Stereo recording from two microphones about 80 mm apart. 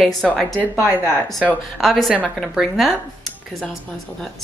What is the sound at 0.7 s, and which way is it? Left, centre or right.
Speech, left.